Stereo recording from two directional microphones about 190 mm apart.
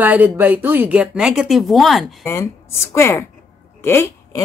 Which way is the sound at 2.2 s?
15° left (ahead or behind).